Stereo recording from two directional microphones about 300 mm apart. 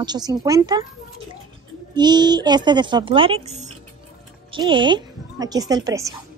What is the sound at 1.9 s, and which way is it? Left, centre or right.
A woman's voice, centre.